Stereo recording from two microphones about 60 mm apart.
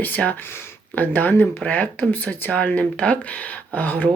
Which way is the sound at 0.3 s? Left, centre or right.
Left.